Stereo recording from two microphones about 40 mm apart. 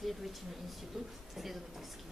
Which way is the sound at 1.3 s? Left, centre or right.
Centre.